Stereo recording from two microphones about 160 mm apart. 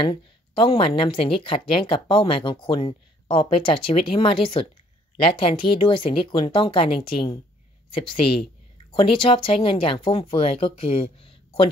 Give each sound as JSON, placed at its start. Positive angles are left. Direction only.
{"t": 0.0, "sound": "speech", "side_deg": 30}